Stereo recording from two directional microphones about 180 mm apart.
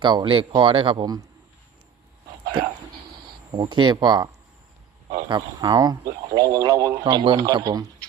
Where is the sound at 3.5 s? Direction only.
25° right (ahead or behind).